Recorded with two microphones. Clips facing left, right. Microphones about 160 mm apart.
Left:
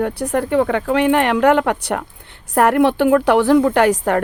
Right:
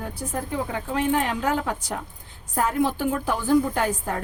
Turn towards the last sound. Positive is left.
turn(degrees=80)